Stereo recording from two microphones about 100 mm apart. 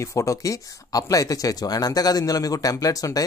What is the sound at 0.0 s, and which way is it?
Speech, 30° left (ahead or behind).